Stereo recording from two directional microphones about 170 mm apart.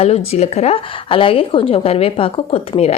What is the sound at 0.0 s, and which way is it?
A woman's voice, 40° left (ahead or behind).